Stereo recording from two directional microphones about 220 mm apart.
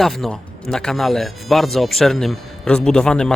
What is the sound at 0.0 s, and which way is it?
Speech, centre (ahead or behind).